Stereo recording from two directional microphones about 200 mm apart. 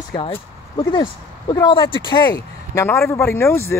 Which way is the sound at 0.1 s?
25° left (ahead or behind).